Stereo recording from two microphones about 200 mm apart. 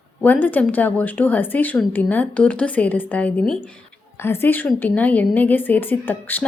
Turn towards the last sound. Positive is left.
turn(degrees=10)  # may be behind; listen again after turning